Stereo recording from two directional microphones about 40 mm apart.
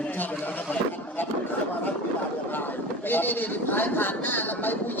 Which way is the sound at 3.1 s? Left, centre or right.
Left.